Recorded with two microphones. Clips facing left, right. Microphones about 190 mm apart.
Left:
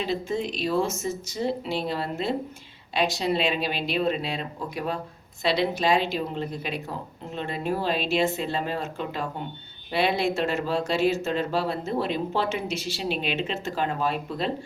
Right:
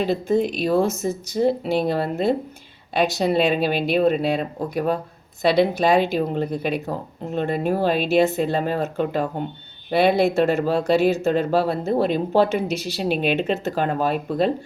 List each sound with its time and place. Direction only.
0.0 s a woman's voice: 55° right (ahead or behind)